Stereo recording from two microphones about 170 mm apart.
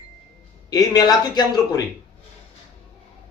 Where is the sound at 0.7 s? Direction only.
20° left (ahead or behind).